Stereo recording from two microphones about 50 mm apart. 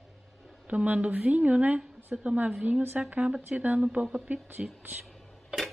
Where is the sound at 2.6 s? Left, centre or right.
Right.